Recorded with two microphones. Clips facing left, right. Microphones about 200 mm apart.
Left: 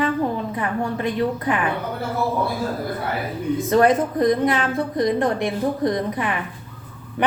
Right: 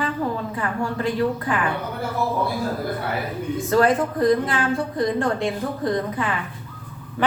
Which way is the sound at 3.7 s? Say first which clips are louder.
Left 1 dB; 20° left (ahead or behind).